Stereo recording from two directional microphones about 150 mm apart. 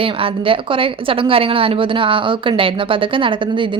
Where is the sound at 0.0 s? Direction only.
35° right (ahead or behind).